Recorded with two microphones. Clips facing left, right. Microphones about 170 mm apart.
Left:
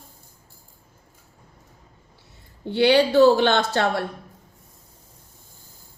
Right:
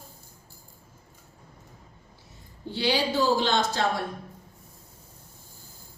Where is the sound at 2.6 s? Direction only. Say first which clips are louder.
Left 9 dB; 65° left (ahead or behind).